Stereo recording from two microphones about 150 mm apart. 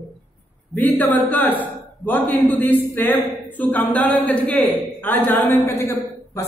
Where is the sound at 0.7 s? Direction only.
10° left (ahead or behind).